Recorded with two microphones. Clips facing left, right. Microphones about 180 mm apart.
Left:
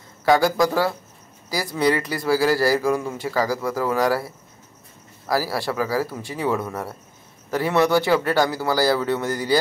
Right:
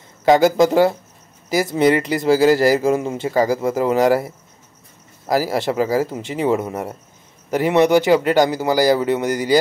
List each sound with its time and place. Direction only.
0.2 s a man's voice: 20° right (ahead or behind)